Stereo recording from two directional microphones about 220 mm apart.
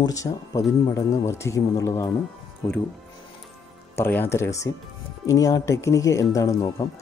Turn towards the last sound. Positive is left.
turn(degrees=15)  # may be behind; listen again after turning